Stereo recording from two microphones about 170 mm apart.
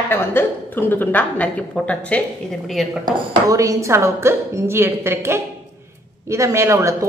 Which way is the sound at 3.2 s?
20° right (ahead or behind).